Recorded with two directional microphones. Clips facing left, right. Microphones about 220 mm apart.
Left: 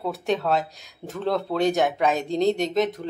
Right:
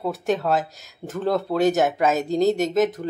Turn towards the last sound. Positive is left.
turn(degrees=0)  # may be behind; listen again after turning